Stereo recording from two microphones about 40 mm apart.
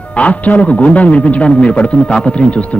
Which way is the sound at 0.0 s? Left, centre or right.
Left.